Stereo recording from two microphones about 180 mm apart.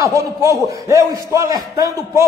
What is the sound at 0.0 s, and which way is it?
A man's voice, 15° right (ahead or behind).